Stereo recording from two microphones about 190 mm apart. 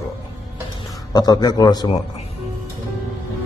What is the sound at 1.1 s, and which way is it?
Speech, 20° left (ahead or behind).